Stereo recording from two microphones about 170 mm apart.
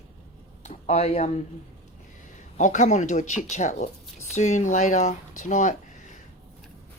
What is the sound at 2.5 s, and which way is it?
Speech, 45° left (ahead or behind).